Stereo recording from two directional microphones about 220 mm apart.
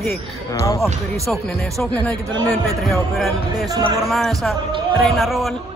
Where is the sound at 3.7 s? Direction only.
15° right (ahead or behind).